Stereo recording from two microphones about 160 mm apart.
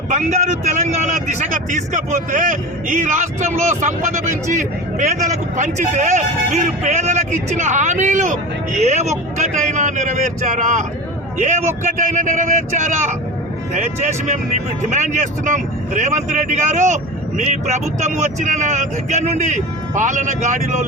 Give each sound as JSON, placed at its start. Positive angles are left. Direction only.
{"t": 0.1, "sound": "speech", "side_deg": -45}
{"t": 4.5, "sound": "speech", "side_deg": -50}